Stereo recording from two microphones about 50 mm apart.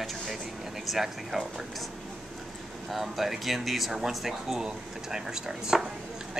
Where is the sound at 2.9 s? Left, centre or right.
Centre.